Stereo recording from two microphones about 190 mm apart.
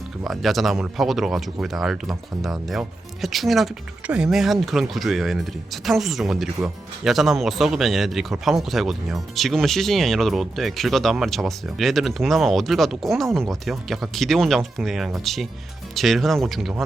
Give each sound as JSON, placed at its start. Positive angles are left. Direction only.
{"t": 0.3, "sound": "speech", "side_deg": 0}